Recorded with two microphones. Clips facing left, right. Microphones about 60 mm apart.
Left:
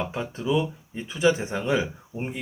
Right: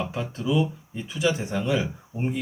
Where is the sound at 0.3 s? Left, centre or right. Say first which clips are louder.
Even; left.